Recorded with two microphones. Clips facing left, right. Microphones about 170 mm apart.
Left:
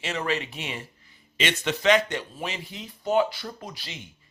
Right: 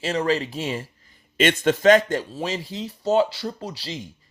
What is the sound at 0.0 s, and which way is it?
Speech, 35° right (ahead or behind).